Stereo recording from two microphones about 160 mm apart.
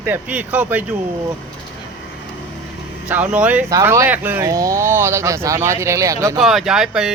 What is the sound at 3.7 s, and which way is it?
Speech, 20° right (ahead or behind).